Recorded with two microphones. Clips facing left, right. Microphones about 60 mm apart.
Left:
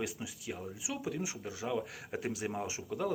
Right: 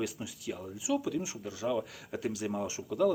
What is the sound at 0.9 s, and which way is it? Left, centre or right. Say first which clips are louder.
Speech: right 7 dB; left.